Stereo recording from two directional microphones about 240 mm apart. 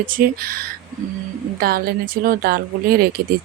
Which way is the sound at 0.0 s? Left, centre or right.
Right.